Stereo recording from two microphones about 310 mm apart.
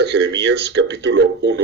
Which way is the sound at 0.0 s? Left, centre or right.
Right.